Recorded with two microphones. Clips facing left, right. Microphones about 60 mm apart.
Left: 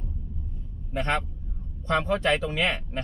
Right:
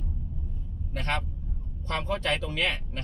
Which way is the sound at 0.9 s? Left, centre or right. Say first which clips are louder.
Left 4 dB; left.